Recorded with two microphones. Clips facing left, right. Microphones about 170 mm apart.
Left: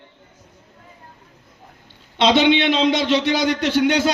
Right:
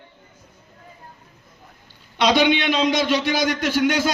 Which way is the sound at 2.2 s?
25° left (ahead or behind).